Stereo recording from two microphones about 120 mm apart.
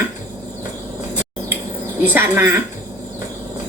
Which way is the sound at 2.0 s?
15° right (ahead or behind).